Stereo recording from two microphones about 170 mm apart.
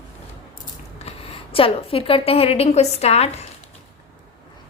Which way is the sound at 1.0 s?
35° left (ahead or behind).